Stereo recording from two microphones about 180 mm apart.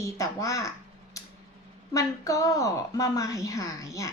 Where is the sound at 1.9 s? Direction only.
20° left (ahead or behind).